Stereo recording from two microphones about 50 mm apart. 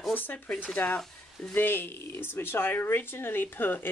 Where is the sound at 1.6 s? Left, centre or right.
Left.